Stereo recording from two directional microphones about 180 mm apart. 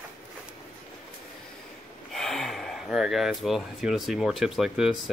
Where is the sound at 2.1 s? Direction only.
Centre (ahead or behind).